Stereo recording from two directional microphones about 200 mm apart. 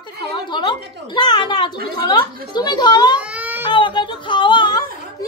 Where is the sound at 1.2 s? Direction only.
20° left (ahead or behind).